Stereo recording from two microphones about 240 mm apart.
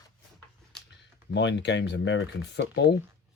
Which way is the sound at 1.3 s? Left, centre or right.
Left.